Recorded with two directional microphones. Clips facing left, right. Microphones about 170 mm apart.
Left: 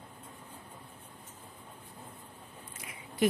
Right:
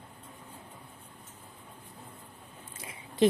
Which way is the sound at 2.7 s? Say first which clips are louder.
Right 2 dB; 25° right (ahead or behind).